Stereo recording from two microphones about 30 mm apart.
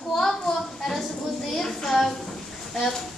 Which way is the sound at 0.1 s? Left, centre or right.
Centre.